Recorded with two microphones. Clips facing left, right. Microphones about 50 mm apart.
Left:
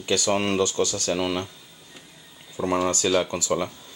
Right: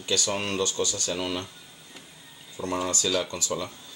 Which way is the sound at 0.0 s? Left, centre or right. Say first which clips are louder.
Left 5 dB; centre.